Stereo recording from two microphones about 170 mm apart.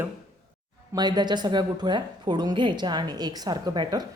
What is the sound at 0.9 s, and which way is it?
A woman's voice, 25° right (ahead or behind).